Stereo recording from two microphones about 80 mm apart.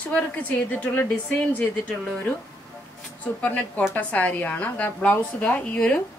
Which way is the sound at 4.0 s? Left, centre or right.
Centre.